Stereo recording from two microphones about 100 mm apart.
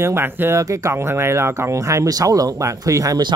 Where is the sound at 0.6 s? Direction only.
30° right (ahead or behind).